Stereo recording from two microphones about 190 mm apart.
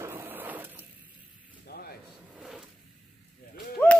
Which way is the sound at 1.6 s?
55° left (ahead or behind).